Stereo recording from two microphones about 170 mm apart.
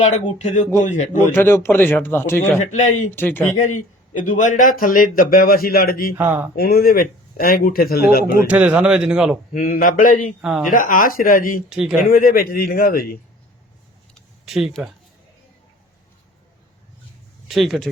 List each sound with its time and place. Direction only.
0.0 s speech: 45° left (ahead or behind)
1.2 s a man's voice: 15° left (ahead or behind)
2.6 s speech: 45° left (ahead or behind)
3.2 s a man's voice: 10° left (ahead or behind)
3.6 s speech: 45° left (ahead or behind)
6.1 s speech: 10° right (ahead or behind)
6.6 s speech: 65° left (ahead or behind)
8.4 s speech: 10° right (ahead or behind)
9.5 s speech: 55° left (ahead or behind)
11.7 s speech: 5° right (ahead or behind)
12.1 s speech: 55° left (ahead or behind)
14.4 s speech: centre (ahead or behind)
17.5 s speech: centre (ahead or behind)